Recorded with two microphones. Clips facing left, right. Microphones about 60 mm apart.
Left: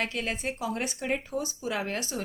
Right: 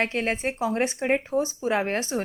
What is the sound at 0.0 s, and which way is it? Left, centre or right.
A woman's voice, right.